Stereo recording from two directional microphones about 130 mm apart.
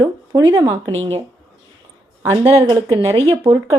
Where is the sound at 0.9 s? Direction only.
50° right (ahead or behind).